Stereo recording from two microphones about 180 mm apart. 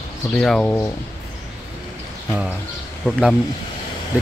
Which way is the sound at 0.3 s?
5° left (ahead or behind).